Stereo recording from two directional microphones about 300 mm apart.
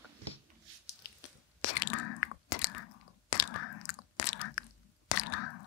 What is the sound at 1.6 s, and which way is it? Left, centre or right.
Chewing, left.